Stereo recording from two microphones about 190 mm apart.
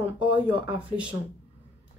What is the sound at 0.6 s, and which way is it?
Speech, 5° right (ahead or behind).